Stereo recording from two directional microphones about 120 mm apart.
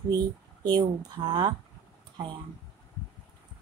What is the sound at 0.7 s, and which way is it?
Speech, 40° right (ahead or behind).